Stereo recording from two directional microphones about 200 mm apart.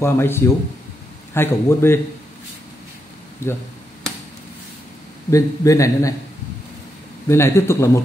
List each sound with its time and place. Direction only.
0.0 s a man's voice: 10° left (ahead or behind)
3.4 s a man's voice: 10° left (ahead or behind)
5.3 s a man's voice: 15° left (ahead or behind)
7.2 s a man's voice: 15° left (ahead or behind)